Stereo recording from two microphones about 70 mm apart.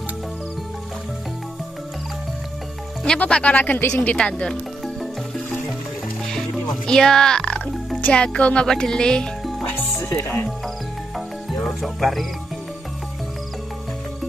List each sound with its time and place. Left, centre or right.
3.2 s speech: centre
4.2 s music: centre
4.8 s music: centre
10.2 s speech: left
11.1 s music: centre